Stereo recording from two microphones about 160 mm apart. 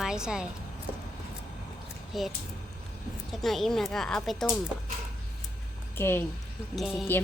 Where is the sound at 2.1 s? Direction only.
Centre (ahead or behind).